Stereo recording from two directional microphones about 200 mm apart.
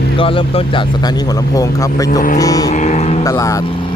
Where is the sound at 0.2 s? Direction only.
25° left (ahead or behind).